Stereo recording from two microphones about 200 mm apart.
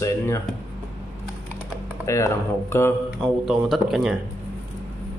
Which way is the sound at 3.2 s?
Centre (ahead or behind).